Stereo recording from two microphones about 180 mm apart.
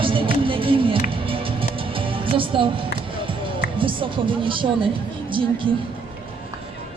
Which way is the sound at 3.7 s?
30° right (ahead or behind).